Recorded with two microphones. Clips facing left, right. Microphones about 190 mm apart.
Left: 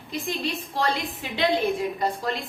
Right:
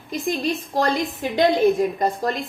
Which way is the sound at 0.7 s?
45° right (ahead or behind).